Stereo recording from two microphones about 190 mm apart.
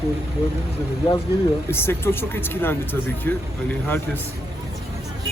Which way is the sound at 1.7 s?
10° left (ahead or behind).